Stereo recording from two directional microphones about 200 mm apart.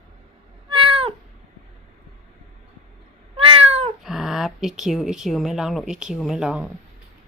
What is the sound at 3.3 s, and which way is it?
Cat, 30° right (ahead or behind).